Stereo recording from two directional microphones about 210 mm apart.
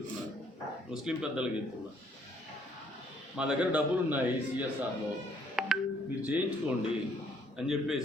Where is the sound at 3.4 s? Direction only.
5° right (ahead or behind).